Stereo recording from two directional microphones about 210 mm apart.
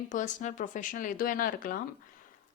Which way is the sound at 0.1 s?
35° left (ahead or behind).